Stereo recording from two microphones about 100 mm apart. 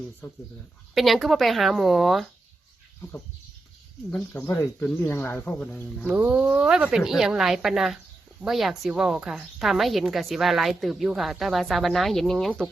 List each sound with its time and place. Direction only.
0.9 s a woman's voice: centre (ahead or behind)
4.4 s speech: 30° left (ahead or behind)
6.1 s a woman's voice: 15° right (ahead or behind); by 12.7 s 5° left (ahead or behind)